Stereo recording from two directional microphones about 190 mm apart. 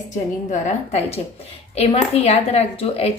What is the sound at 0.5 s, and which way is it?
Speech, 35° left (ahead or behind).